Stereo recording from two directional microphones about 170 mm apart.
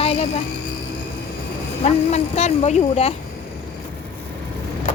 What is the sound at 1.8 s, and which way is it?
Speech, 40° left (ahead or behind).